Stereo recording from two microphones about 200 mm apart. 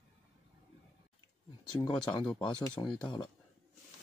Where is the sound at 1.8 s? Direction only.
20° left (ahead or behind).